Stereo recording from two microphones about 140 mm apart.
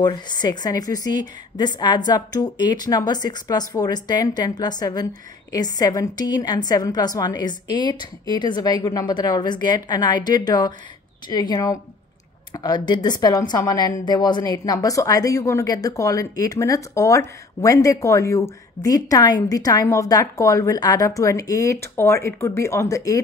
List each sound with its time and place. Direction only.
0.0 s a woman's voice: 30° left (ahead or behind)